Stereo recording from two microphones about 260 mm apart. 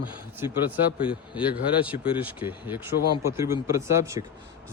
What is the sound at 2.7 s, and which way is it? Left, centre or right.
Speech, centre.